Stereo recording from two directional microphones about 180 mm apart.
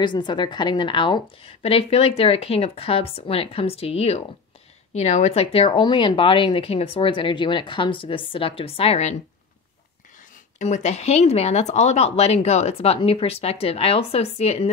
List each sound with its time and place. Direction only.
0.0 s a woman's voice: 25° left (ahead or behind)
10.6 s a woman's voice: 40° left (ahead or behind)